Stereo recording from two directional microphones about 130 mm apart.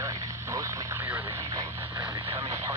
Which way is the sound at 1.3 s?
30° right (ahead or behind).